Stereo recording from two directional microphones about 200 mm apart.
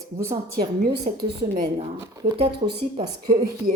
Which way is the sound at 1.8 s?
25° right (ahead or behind).